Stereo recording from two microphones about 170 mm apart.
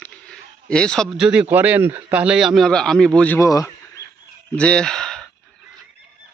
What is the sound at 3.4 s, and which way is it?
Speech, 20° left (ahead or behind).